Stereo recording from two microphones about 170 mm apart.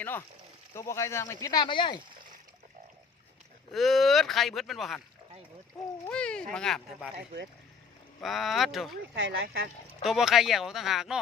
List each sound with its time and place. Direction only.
0.0 s speech: 15° left (ahead or behind); by 2.0 s 30° left (ahead or behind)
3.7 s speech: centre (ahead or behind)
6.1 s speech: 5° left (ahead or behind)
8.2 s speech: centre (ahead or behind)
9.1 s speech: 80° right
10.1 s speech: centre (ahead or behind)